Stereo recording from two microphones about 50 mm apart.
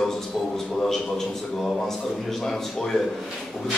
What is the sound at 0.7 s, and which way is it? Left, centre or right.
A man's voice, centre.